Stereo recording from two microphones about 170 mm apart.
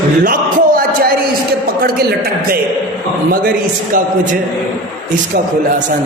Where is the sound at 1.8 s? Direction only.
60° right (ahead or behind).